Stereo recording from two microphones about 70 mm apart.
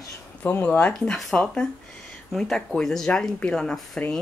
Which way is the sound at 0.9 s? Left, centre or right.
Centre.